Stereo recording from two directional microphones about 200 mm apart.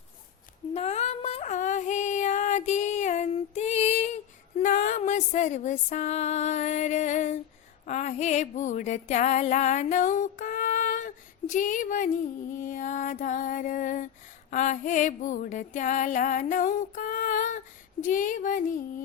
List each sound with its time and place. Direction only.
0.7 s female singing: 35° left (ahead or behind)
7.9 s music: 35° left (ahead or behind)
18.0 s a sound: 40° left (ahead or behind)